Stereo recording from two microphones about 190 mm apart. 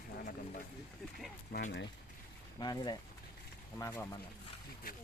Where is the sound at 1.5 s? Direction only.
55° left (ahead or behind).